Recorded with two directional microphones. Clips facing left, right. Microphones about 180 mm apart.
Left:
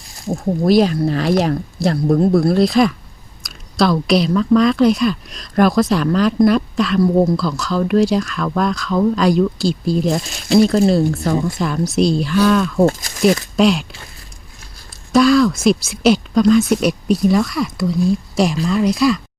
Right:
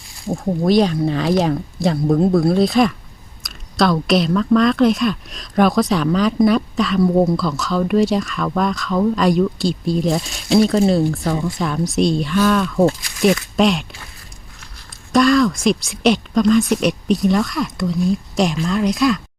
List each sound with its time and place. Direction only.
0.3 s speech: 5° left (ahead or behind)
12.8 s speech: 45° left (ahead or behind)
13.6 s speech: centre (ahead or behind)
15.1 s speech: centre (ahead or behind)